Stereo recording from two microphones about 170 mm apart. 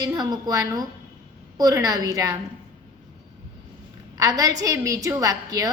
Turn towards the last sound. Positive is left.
turn(degrees=-20)  # may be behind; listen again after turning